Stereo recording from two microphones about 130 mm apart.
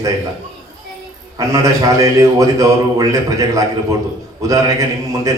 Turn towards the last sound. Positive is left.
turn(degrees=-25)  # may be behind; listen again after turning